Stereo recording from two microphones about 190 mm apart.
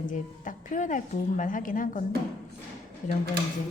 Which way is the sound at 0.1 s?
40° left (ahead or behind).